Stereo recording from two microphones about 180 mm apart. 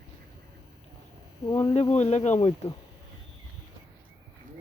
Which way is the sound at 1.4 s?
20° left (ahead or behind).